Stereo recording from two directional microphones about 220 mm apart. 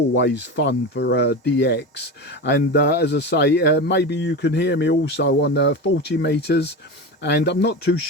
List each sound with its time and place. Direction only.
0.1 s speech: 55° left (ahead or behind)